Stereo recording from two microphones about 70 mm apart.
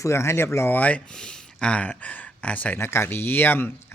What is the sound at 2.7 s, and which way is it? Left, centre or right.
Speech, left.